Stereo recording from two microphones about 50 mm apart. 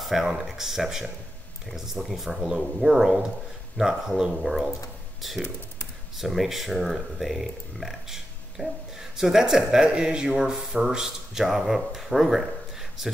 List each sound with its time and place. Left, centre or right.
0.0 s speech: centre